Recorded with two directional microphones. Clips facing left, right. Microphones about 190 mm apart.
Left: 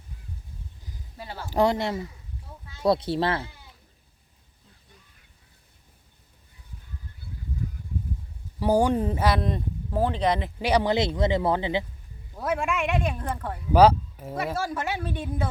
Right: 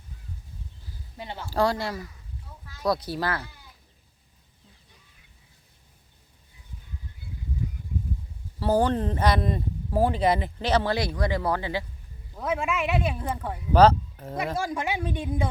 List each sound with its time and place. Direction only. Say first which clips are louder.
1.1 s speech: right 2 dB; 20° right (ahead or behind)
1.5 s speech: left 2 dB; 20° left (ahead or behind)
8.5 s speech: left 1 dB; 15° left (ahead or behind); by 10.5 s 5° right (ahead or behind)
10.6 s speech: left 2 dB; 15° left (ahead or behind)
12.4 s speech: left 1 dB; centre (ahead or behind)
13.7 s speech: left 1 dB; 10° left (ahead or behind)
14.5 s speech: right 1 dB; 15° right (ahead or behind)